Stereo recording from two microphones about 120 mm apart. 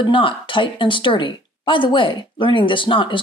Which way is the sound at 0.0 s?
45° left (ahead or behind).